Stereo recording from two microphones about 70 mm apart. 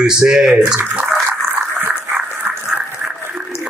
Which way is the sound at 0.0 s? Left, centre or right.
Centre.